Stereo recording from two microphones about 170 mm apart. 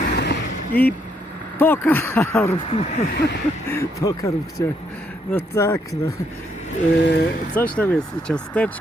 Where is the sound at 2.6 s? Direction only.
40° left (ahead or behind).